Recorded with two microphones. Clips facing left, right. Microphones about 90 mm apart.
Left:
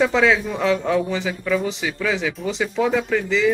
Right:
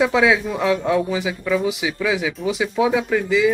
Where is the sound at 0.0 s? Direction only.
5° right (ahead or behind).